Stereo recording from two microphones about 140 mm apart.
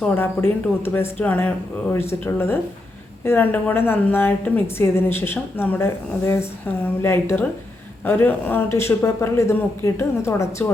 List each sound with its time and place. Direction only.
0.1 s a woman's voice: 15° left (ahead or behind)